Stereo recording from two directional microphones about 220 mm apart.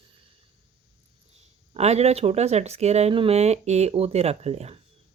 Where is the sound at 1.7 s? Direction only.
30° right (ahead or behind).